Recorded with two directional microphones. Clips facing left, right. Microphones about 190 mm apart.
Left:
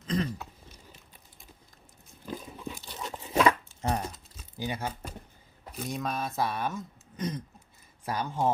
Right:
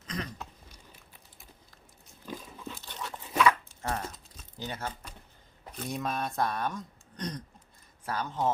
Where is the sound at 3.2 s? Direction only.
30° left (ahead or behind).